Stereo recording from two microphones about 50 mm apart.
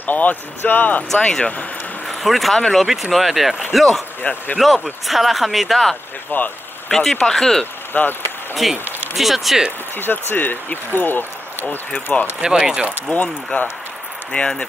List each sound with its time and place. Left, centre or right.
0.0 s speech: left
1.2 s speech: left
2.0 s vehicle: centre
2.5 s speech: centre
4.2 s speech: left
4.6 s speech: centre
6.3 s speech: left
6.9 s speech: centre
7.9 s speech: left
8.6 s speech: centre
9.9 s speech: left
11.7 s speech: left
12.4 s speech: centre
13.5 s speech: left